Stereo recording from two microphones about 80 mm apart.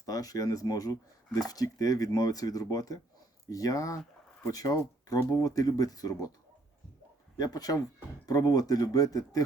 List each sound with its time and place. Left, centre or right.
0.0 s speech: left
7.3 s speech: left